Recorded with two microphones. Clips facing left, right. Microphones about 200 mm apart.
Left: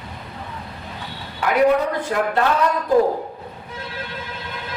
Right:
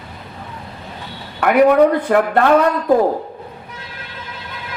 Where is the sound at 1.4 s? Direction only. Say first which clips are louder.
Right 6 dB; 60° right (ahead or behind).